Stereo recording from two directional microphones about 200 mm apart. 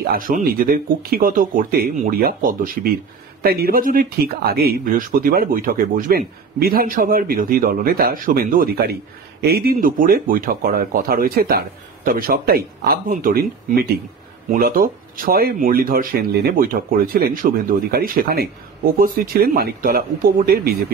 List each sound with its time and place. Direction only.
0.0 s speech: 45° right (ahead or behind)